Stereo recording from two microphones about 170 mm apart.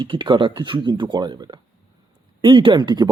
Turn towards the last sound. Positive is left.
turn(degrees=-25)  # may be behind; listen again after turning